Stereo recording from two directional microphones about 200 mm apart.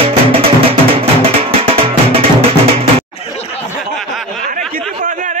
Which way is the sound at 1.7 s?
30° right (ahead or behind).